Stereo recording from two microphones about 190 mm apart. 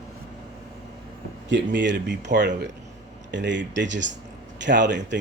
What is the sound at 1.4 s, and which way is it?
Speech, 70° right (ahead or behind).